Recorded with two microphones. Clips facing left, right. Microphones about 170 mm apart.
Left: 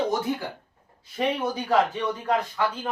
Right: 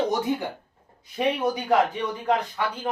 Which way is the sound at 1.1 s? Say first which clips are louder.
Right 2 dB; 15° right (ahead or behind).